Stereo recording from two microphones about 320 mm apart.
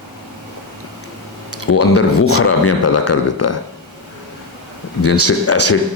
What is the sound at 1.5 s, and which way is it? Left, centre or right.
A man's voice, left.